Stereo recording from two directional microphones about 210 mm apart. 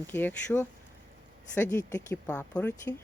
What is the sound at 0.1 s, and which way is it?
A woman's voice, 10° left (ahead or behind).